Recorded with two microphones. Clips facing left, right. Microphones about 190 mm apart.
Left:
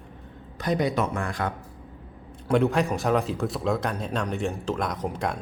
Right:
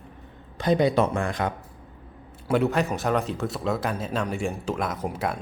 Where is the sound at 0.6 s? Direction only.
25° right (ahead or behind).